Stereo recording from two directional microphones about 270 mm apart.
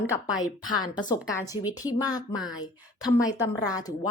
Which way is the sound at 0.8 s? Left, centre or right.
Centre.